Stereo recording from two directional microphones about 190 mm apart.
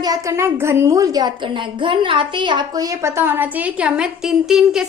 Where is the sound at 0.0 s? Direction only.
20° right (ahead or behind).